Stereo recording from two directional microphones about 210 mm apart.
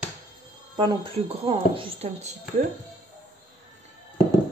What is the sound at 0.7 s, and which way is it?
Speech, 25° right (ahead or behind).